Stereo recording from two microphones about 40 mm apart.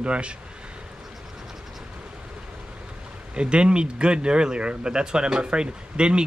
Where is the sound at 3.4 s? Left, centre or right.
Right.